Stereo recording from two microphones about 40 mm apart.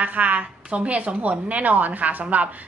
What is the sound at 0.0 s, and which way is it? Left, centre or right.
A woman's voice, right.